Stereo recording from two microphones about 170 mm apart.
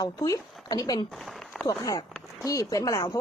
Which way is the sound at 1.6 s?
20° left (ahead or behind).